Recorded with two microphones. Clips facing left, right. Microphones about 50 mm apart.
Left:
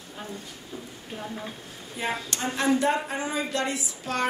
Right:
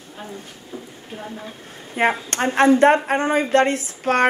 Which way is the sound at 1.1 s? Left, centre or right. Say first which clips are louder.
Right 2 dB; centre.